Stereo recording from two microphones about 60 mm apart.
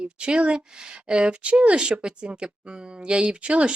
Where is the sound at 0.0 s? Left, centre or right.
Centre.